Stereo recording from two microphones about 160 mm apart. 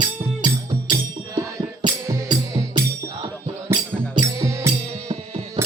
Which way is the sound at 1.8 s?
30° right (ahead or behind).